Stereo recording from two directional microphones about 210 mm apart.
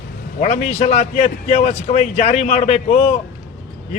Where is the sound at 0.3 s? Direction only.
35° left (ahead or behind).